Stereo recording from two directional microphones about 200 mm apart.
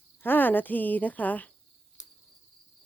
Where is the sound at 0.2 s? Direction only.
10° left (ahead or behind).